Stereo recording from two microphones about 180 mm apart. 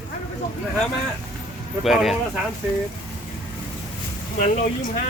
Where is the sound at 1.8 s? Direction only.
Centre (ahead or behind).